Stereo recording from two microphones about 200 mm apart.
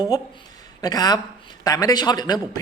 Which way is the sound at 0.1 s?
20° left (ahead or behind).